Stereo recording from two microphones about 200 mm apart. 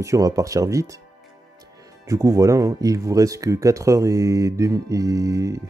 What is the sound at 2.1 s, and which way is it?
Speech, 15° right (ahead or behind).